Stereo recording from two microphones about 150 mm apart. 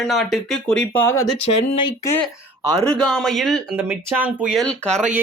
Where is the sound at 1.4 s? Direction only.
40° left (ahead or behind).